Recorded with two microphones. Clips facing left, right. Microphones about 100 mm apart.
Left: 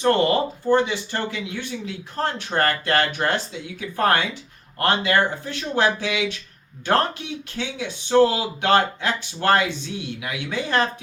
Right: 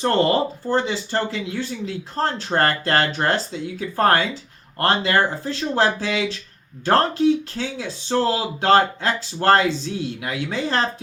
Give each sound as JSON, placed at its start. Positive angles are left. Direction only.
{"t": 0.0, "sound": "speech", "side_deg": -35}